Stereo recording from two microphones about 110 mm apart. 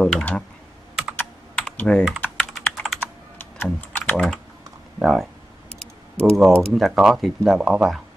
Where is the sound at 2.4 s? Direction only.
Centre (ahead or behind).